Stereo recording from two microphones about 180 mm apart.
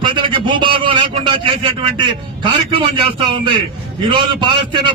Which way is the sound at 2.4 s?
30° right (ahead or behind).